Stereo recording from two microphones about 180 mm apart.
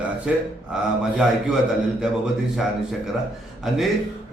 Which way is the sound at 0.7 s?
5° right (ahead or behind).